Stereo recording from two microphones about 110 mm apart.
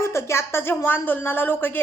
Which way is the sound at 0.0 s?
25° left (ahead or behind).